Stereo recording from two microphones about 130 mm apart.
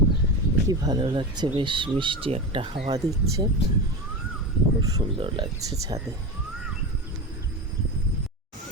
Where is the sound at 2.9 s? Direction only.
25° right (ahead or behind).